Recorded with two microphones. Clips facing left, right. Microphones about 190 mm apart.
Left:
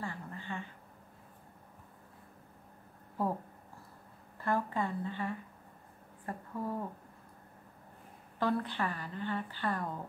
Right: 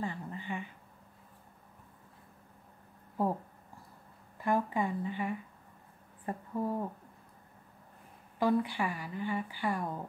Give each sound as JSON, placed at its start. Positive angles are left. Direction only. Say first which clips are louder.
{"t": 0.0, "sound": "a sound", "louder": "right 4 dB", "side_deg": -20}
{"t": 4.4, "sound": "speech", "louder": "right 2 dB", "side_deg": -15}
{"t": 8.4, "sound": "a woman's voice", "louder": "right 3 dB", "side_deg": -10}